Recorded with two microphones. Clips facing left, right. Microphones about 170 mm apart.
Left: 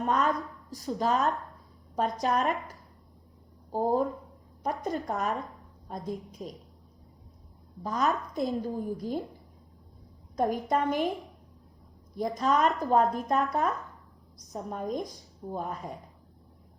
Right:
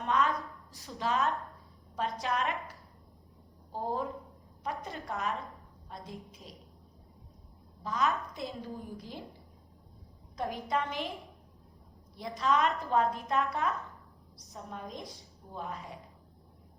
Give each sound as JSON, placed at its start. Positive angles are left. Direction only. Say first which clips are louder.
{"t": 0.0, "sound": "a sound", "louder": "left 2 dB", "side_deg": 40}
{"t": 0.7, "sound": "a woman's voice", "louder": "left 6 dB", "side_deg": 40}
{"t": 3.7, "sound": "speech", "louder": "left 8 dB", "side_deg": 45}
{"t": 7.9, "sound": "speech", "louder": "left 3 dB", "side_deg": 40}
{"t": 10.3, "sound": "a woman's voice", "louder": "left 6 dB", "side_deg": 45}
{"t": 12.1, "sound": "a woman's voice", "louder": "left 3 dB", "side_deg": 45}